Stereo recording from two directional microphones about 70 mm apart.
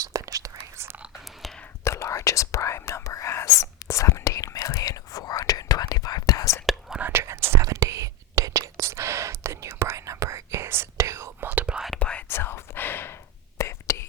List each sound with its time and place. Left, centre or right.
0.0 s whispering: right
1.8 s whispering: left
7.1 s whispering: right
7.6 s whispering: right
11.4 s whispering: centre
11.9 s whispering: centre
12.3 s whispering: left
13.6 s whispering: left